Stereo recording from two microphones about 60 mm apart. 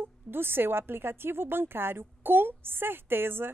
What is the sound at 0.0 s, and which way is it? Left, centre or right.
Speech, right.